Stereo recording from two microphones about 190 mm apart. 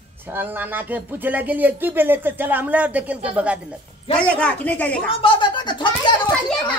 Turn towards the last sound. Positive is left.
turn(degrees=25)  # may be behind; listen again after turning